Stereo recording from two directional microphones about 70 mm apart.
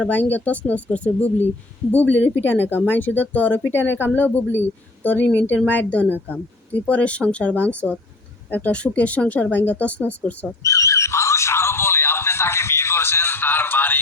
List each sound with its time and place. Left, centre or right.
0.0 s speech: left
10.6 s music: left